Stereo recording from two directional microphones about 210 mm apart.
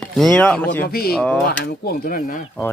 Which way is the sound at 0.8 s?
45° left (ahead or behind).